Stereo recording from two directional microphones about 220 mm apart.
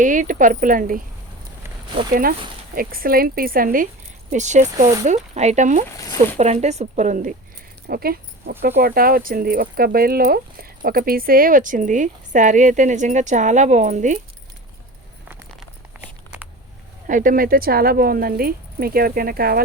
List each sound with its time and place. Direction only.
0.0 s speech: 35° right (ahead or behind)
2.7 s speech: 40° right (ahead or behind)
7.9 s dog: 45° right (ahead or behind)
8.8 s speech: 40° right (ahead or behind)
16.0 s a sound: 5° right (ahead or behind)
17.1 s speech: 40° right (ahead or behind)